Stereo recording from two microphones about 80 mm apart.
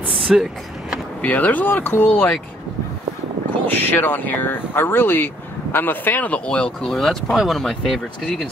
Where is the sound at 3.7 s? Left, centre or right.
Left; by 8.5 s centre.